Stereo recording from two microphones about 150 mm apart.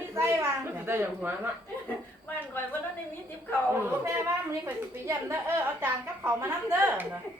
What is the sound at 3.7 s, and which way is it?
A woman's voice, 15° right (ahead or behind).